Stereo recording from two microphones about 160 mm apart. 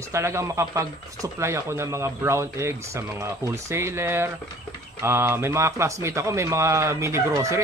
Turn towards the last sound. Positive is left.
turn(degrees=-15)  # may be behind; listen again after turning